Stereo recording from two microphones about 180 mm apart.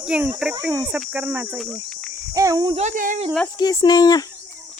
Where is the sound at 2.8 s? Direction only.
45° right (ahead or behind).